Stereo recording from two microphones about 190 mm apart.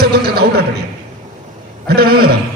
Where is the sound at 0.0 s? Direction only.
55° right (ahead or behind).